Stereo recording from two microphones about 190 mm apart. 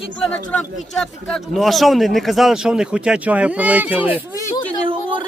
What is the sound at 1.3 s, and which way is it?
Speech, centre (ahead or behind).